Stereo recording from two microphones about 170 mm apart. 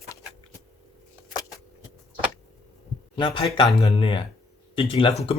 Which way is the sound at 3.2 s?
30° left (ahead or behind).